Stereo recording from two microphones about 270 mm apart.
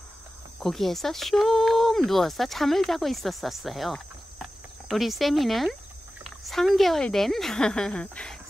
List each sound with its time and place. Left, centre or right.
0.6 s speech: centre